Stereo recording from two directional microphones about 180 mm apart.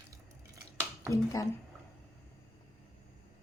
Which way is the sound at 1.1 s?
15° left (ahead or behind).